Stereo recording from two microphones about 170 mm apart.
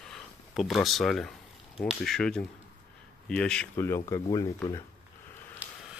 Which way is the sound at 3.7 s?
15° left (ahead or behind).